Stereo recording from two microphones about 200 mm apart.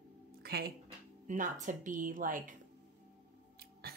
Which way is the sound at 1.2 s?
40° right (ahead or behind).